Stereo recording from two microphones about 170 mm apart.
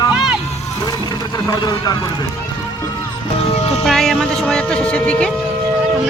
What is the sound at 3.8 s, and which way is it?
Speech, centre (ahead or behind).